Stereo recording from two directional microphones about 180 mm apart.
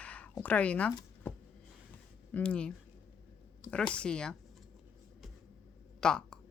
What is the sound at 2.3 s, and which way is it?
Speech, 5° left (ahead or behind).